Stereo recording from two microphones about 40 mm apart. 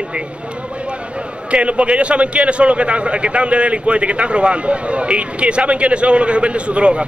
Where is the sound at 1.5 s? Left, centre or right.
Right.